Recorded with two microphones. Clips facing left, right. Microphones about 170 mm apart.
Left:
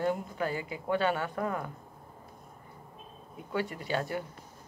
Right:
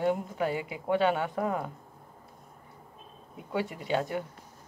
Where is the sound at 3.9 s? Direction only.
15° right (ahead or behind).